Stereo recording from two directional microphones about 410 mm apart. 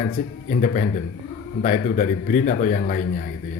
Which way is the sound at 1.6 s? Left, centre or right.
Centre.